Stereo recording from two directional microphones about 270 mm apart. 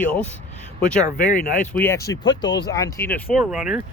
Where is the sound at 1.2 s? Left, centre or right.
Left.